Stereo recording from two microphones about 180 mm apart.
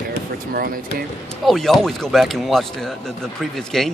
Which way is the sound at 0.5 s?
55° right (ahead or behind).